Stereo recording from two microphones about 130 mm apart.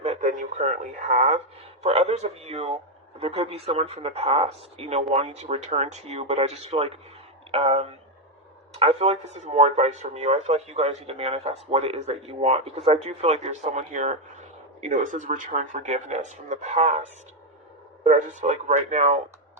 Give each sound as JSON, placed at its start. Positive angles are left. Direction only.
{"t": 0.0, "sound": "radio", "side_deg": -55}
{"t": 0.3, "sound": "speech", "side_deg": -75}
{"t": 1.8, "sound": "speech", "side_deg": -50}
{"t": 18.0, "sound": "speech", "side_deg": -60}